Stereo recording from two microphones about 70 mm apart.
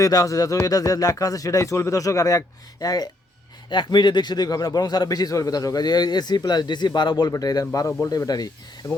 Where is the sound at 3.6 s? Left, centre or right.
Left.